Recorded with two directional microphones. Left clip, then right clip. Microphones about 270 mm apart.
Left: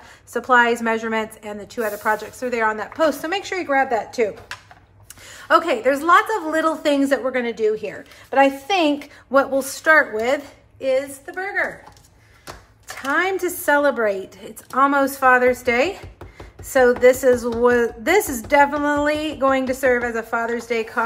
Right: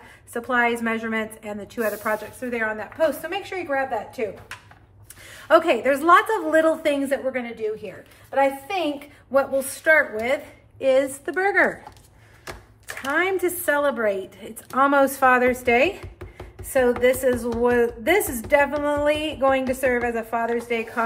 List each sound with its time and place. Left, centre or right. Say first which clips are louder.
0.3 s a woman's voice: left 6 dB; centre
5.3 s a woman's voice: even; centre
12.8 s a woman's voice: left 2 dB; centre